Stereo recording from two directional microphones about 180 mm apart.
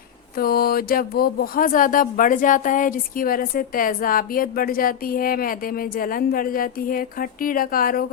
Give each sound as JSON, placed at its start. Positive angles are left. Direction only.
{"t": 0.3, "sound": "speech", "side_deg": 55}